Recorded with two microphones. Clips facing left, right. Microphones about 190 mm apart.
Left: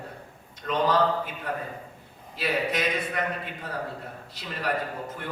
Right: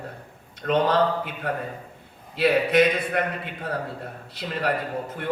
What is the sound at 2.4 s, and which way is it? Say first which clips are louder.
Speech: right 9 dB; 60° right (ahead or behind).